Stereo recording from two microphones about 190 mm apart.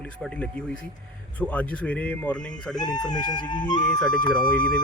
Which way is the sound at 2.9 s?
20° left (ahead or behind).